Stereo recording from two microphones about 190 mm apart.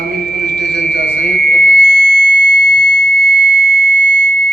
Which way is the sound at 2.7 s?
50° right (ahead or behind).